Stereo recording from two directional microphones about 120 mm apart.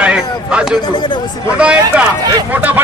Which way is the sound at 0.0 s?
10° right (ahead or behind).